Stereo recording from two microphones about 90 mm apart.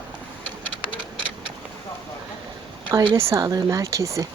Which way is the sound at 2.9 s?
35° right (ahead or behind).